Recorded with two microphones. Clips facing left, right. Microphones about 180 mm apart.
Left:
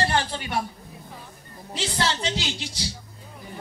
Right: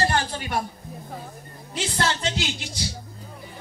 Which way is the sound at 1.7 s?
50° right (ahead or behind).